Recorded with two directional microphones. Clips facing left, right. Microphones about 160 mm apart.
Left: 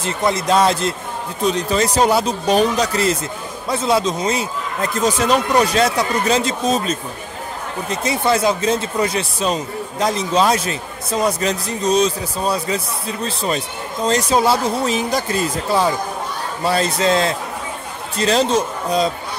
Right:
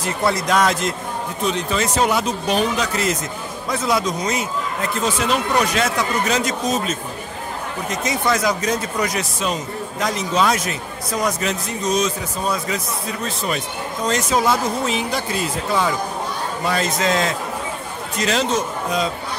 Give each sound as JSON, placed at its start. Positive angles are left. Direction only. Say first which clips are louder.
{"t": 0.0, "sound": "speech", "louder": "left 1 dB", "side_deg": 25}
{"t": 4.9, "sound": "speech", "louder": "left 5 dB", "side_deg": 40}
{"t": 16.6, "sound": "speech", "louder": "left 4 dB", "side_deg": 30}